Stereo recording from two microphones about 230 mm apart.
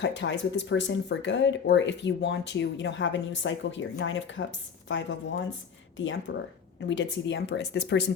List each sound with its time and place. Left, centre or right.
0.0 s speech: left